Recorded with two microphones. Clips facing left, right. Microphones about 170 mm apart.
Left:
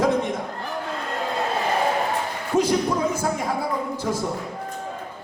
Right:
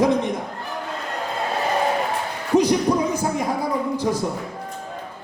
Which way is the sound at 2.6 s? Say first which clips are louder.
Right 2 dB; 15° right (ahead or behind).